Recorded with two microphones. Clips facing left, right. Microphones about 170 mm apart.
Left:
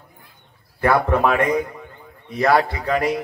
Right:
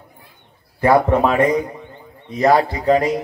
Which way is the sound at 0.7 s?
25° right (ahead or behind).